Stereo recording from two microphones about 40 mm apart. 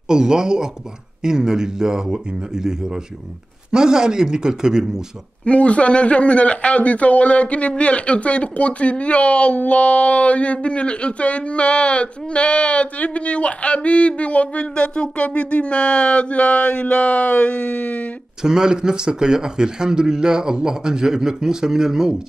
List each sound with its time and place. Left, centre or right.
0.1 s speech: centre
5.4 s speech: left
18.4 s speech: centre